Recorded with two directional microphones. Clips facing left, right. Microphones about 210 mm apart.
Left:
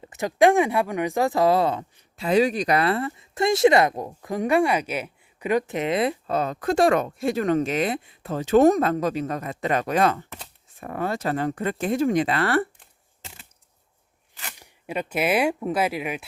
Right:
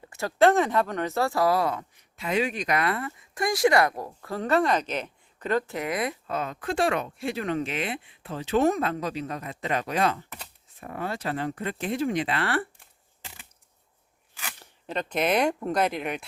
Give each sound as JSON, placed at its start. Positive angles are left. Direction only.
{"t": 0.0, "sound": "speech", "side_deg": 20}
{"t": 14.4, "sound": "speech", "side_deg": 10}